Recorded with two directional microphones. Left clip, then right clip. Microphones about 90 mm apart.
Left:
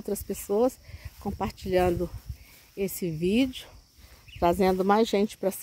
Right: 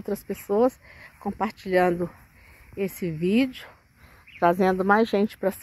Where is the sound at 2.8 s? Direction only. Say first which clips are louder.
Right 1 dB; 35° left (ahead or behind).